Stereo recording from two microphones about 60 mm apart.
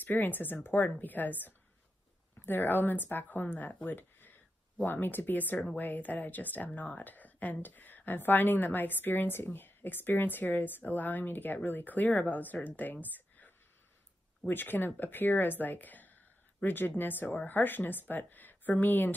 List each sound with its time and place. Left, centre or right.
0.0 s speech: left
14.5 s speech: left